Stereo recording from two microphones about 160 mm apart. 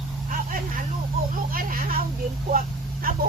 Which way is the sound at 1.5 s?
60° right (ahead or behind).